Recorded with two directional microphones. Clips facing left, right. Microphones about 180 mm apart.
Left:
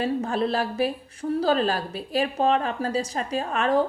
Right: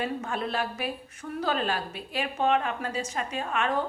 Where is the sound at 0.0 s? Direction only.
35° left (ahead or behind).